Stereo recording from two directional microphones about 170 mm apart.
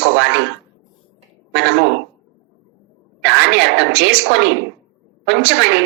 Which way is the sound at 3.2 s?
90° right.